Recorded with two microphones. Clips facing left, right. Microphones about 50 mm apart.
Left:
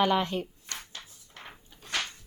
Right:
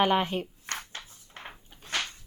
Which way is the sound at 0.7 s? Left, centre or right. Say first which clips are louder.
Right 4 dB; right.